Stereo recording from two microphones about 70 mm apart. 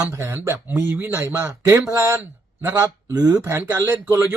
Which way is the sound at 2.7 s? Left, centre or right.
Right.